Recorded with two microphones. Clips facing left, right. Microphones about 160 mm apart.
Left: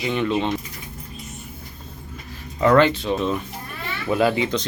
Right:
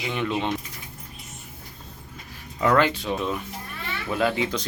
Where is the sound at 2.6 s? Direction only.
5° right (ahead or behind).